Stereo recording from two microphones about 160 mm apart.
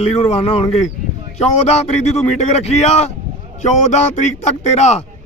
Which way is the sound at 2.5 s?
40° left (ahead or behind).